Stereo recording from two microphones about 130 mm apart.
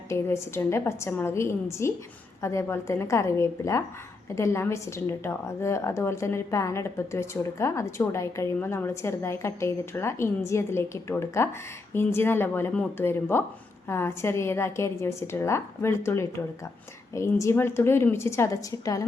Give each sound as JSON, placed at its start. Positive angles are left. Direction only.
{"t": 0.1, "sound": "a woman's voice", "side_deg": 20}